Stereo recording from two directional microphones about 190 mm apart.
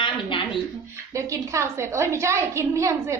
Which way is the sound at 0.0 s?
25° left (ahead or behind).